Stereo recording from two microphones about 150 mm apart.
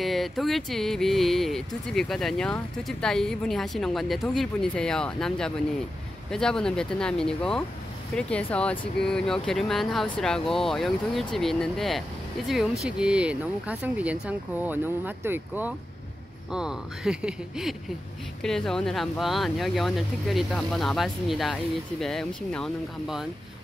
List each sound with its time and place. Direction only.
0.0 s speech: centre (ahead or behind)